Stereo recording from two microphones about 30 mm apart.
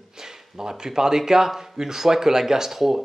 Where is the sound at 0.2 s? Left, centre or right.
Centre.